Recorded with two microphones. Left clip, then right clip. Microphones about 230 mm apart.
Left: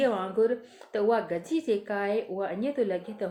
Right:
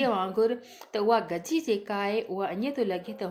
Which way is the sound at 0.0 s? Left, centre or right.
Right.